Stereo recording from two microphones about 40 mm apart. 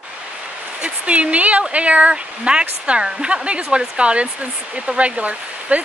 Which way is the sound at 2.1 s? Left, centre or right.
Right.